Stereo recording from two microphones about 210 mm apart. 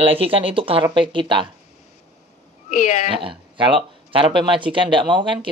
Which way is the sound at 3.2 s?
25° right (ahead or behind).